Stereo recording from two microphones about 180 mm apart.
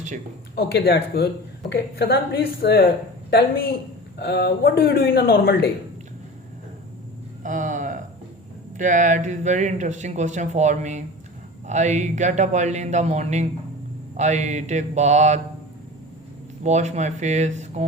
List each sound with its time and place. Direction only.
0.5 s a woman's voice: 60° left (ahead or behind)
7.4 s a sound: 45° right (ahead or behind)
8.8 s speech: 45° right (ahead or behind)
16.6 s speech: 40° right (ahead or behind)